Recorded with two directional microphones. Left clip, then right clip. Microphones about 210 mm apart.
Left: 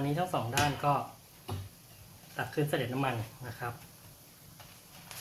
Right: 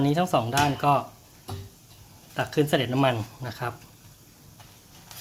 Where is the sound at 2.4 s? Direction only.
45° right (ahead or behind).